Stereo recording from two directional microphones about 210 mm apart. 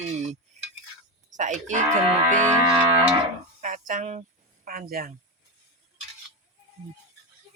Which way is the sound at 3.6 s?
40° right (ahead or behind).